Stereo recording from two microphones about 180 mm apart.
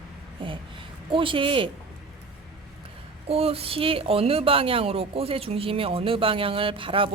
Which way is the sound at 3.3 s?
35° right (ahead or behind).